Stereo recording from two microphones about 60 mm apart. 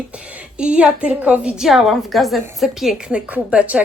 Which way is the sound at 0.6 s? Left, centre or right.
Centre.